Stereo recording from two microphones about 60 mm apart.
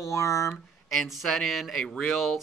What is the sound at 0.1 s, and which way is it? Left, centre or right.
Speech, left.